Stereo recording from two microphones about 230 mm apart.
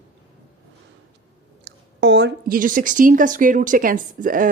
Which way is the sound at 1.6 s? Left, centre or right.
Right.